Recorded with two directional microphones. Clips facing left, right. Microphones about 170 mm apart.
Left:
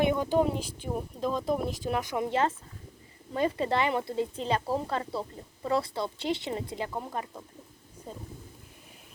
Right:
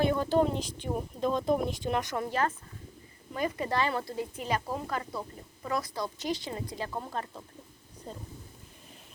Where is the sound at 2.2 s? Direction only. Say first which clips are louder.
Left 3 dB; 25° left (ahead or behind).